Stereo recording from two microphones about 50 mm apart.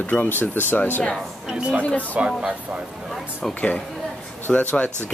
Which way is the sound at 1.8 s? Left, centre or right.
Left.